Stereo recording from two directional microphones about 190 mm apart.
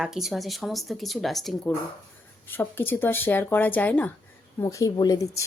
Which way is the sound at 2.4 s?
10° left (ahead or behind).